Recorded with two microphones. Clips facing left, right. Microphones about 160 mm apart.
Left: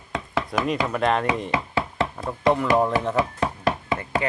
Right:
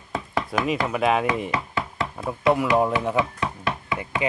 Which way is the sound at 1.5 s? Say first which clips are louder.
Left 2 dB; 30° left (ahead or behind).